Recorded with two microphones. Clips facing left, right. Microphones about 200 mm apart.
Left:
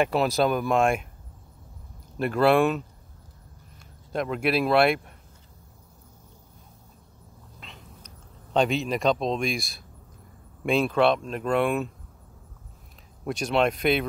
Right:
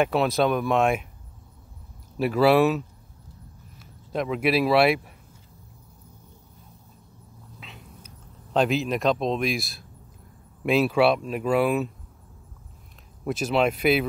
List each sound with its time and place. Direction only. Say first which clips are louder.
0.0 s speech: right 1 dB; centre (ahead or behind)
2.1 s speech: right 2 dB; 5° right (ahead or behind)
4.1 s speech: right 2 dB; centre (ahead or behind)
7.6 s cat: right 1 dB; 5° right (ahead or behind)
8.5 s speech: right 1 dB; centre (ahead or behind)
13.2 s speech: right 1 dB; 5° right (ahead or behind)